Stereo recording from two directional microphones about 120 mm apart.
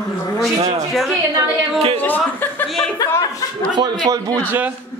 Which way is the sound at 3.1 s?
25° left (ahead or behind).